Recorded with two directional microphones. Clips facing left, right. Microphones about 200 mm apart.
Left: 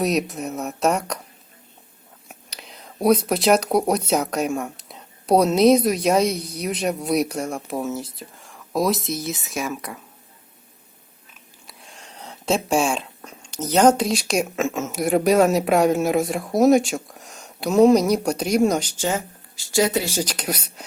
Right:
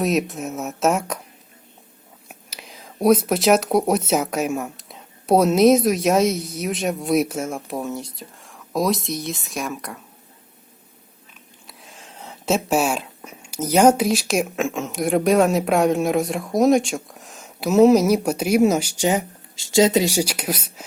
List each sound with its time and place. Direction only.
0.0 s speech: centre (ahead or behind)
2.2 s speech: 5° right (ahead or behind)
11.6 s speech: centre (ahead or behind)